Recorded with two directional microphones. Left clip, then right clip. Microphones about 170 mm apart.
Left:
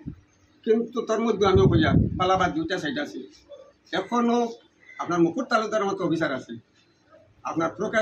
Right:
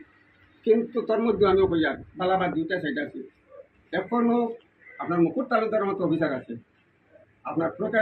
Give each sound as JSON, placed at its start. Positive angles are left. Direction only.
{"t": 0.7, "sound": "a man's voice", "side_deg": 0}
{"t": 7.4, "sound": "a man's voice", "side_deg": 5}